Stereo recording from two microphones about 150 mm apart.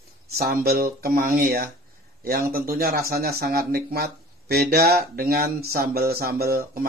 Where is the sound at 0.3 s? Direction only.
90° right.